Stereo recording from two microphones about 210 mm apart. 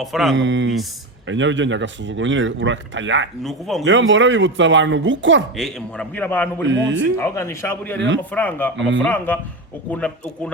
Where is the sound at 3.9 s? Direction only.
60° right (ahead or behind).